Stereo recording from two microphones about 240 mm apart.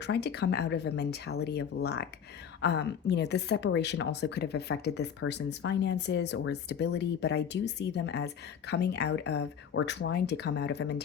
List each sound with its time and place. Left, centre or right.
0.0 s speech: left